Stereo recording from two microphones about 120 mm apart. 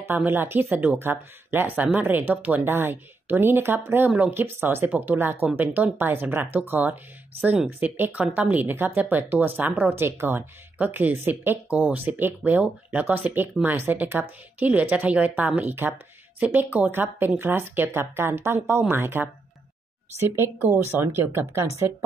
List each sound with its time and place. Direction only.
0.0 s speech: 20° right (ahead or behind)